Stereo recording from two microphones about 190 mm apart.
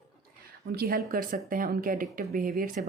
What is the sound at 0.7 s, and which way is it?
Speech, 50° right (ahead or behind).